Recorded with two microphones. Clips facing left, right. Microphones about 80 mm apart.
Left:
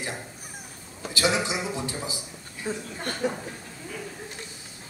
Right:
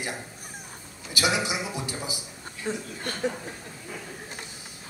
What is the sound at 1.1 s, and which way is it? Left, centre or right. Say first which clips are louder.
A man's voice: left 1 dB; centre.